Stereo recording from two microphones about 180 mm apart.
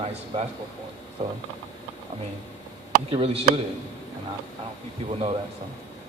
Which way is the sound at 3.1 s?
35° right (ahead or behind).